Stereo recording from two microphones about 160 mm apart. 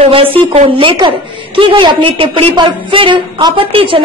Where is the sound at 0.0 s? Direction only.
35° right (ahead or behind).